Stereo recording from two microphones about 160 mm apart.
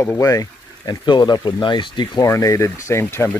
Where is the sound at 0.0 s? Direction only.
15° left (ahead or behind).